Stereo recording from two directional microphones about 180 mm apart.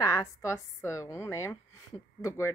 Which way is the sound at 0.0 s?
20° left (ahead or behind).